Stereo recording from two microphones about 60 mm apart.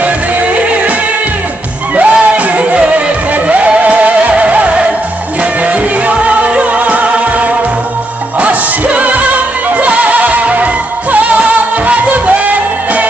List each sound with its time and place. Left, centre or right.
0.6 s music: right
2.0 s music: right